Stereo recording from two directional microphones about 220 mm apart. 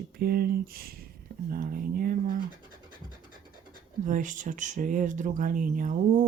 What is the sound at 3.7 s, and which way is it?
Speech, 35° right (ahead or behind).